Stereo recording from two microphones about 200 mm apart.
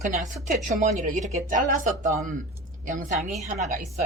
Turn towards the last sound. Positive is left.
turn(degrees=-35)  # may be behind; listen again after turning